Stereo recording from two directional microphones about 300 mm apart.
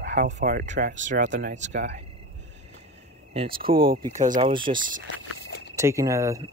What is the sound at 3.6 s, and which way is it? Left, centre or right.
Speech, centre.